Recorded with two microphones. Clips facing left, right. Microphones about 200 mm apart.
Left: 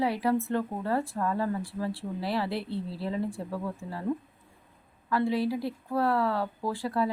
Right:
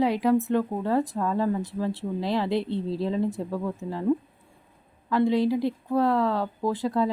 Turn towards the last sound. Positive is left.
turn(degrees=-20)  # may be behind; listen again after turning